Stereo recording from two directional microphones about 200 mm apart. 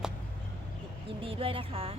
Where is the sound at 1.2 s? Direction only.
25° right (ahead or behind).